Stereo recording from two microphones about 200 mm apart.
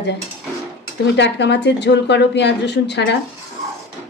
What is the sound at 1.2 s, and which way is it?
A woman's voice, 60° left (ahead or behind).